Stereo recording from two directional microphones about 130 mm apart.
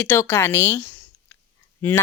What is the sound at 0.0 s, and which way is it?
Speech, 20° left (ahead or behind).